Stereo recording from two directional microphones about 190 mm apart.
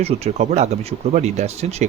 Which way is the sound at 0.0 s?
35° right (ahead or behind).